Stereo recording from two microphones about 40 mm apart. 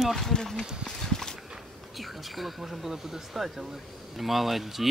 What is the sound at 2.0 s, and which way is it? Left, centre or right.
Speech, centre.